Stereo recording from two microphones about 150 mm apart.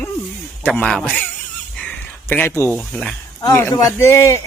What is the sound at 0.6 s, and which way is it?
Speech, 5° left (ahead or behind).